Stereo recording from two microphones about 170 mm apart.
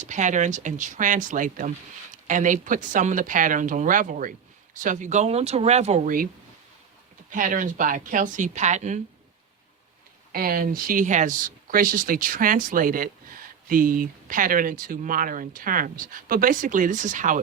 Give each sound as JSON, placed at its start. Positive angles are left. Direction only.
{"t": 0.0, "sound": "speech", "side_deg": -45}
{"t": 7.3, "sound": "speech", "side_deg": -50}
{"t": 10.3, "sound": "speech", "side_deg": -60}